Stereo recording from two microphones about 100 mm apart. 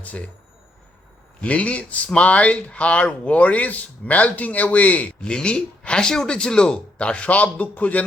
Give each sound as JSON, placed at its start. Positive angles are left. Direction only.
{"t": 0.0, "sound": "speech", "side_deg": 15}
{"t": 1.4, "sound": "speech", "side_deg": 15}